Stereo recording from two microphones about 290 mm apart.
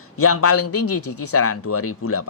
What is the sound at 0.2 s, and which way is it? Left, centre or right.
Speech, left.